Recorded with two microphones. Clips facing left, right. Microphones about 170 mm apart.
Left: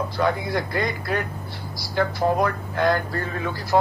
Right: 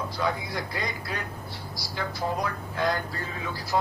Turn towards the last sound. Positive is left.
turn(degrees=60)  # may be behind; listen again after turning